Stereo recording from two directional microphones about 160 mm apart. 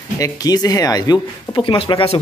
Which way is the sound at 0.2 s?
25° left (ahead or behind).